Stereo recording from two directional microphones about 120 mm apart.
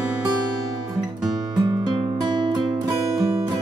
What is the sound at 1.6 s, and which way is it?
Music, 35° right (ahead or behind).